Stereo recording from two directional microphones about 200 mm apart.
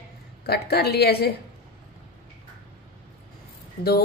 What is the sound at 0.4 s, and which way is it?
Speech, 50° left (ahead or behind).